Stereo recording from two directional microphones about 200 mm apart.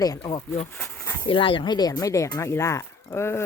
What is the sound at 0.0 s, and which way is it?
Speech, 20° left (ahead or behind).